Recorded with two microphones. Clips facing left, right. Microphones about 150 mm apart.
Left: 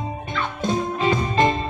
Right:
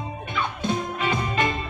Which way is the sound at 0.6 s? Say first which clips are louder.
Left 6 dB; 35° left (ahead or behind).